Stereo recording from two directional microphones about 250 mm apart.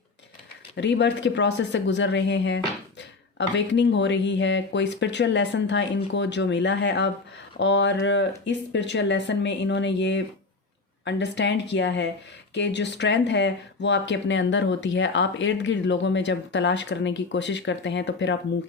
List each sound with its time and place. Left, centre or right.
0.8 s speech: left